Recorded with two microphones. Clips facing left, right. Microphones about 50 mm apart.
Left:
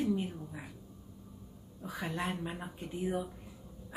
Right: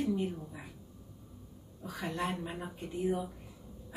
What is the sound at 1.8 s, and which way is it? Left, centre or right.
Speech, centre.